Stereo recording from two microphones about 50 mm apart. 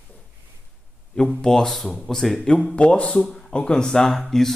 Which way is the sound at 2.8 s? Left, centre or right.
Left.